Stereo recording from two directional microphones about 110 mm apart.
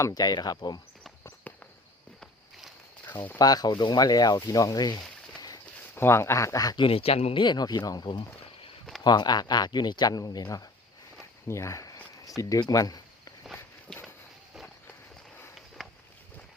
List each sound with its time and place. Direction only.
0.0 s speech: 35° left (ahead or behind)
1.5 s walk: 15° left (ahead or behind)
3.3 s speech: 35° left (ahead or behind)
5.9 s speech: 20° left (ahead or behind)
6.8 s speech: 60° left (ahead or behind)
7.4 s speech: 40° left (ahead or behind)
11.2 s a sound: 25° left (ahead or behind)
12.4 s speech: 35° left (ahead or behind)
13.9 s walk: 5° left (ahead or behind)
15.8 s boat: centre (ahead or behind)